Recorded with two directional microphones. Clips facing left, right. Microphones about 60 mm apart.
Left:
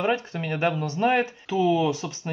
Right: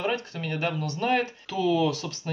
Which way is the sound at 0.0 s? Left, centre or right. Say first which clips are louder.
Left 4 dB; left.